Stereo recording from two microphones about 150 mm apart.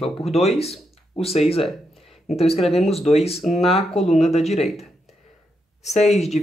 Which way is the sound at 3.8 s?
Centre (ahead or behind).